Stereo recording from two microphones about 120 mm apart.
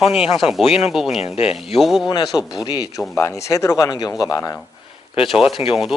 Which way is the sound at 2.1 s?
35° left (ahead or behind).